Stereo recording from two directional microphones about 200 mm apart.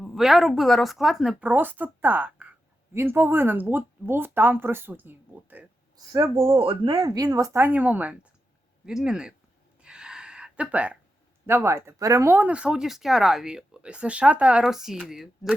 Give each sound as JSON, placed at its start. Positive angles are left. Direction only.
{"t": 0.0, "sound": "speech", "side_deg": 0}
{"t": 6.3, "sound": "speech", "side_deg": -25}
{"t": 9.8, "sound": "a sound", "side_deg": -5}
{"t": 11.4, "sound": "speech", "side_deg": -10}